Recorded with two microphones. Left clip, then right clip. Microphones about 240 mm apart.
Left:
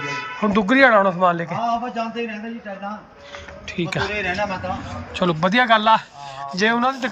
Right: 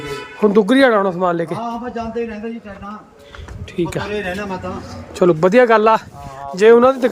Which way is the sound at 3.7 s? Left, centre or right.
Centre.